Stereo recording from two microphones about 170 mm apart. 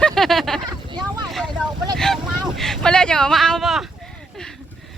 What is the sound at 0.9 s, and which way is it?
Speech, 25° right (ahead or behind).